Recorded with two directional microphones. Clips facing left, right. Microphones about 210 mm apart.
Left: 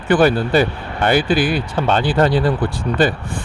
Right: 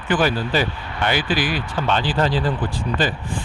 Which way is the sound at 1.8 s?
50° left (ahead or behind).